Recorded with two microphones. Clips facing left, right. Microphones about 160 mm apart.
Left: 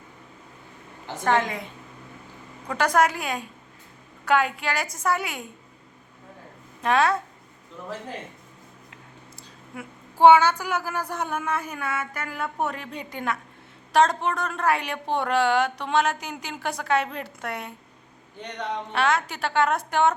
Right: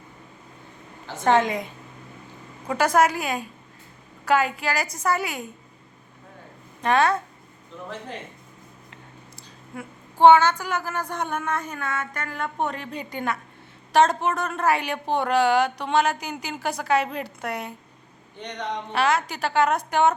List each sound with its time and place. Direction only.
1.2 s a woman's voice: 20° right (ahead or behind)
2.6 s a woman's voice: 5° right (ahead or behind)
6.8 s a woman's voice: centre (ahead or behind)
9.7 s a woman's voice: 10° left (ahead or behind)
18.9 s a woman's voice: centre (ahead or behind)